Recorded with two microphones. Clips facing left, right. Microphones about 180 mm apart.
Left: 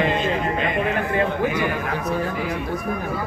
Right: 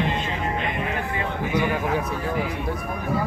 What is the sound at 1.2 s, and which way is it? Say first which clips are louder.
Speech: left 3 dB; 75° left (ahead or behind).